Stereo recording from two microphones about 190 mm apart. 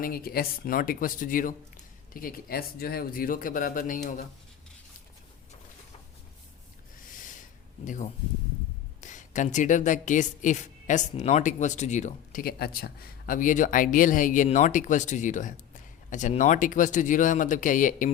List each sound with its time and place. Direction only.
0.0 s speech: 50° left (ahead or behind)
7.9 s a woman's voice: 40° left (ahead or behind)